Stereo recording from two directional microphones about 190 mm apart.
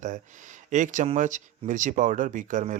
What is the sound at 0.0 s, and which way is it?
Speech, 40° right (ahead or behind).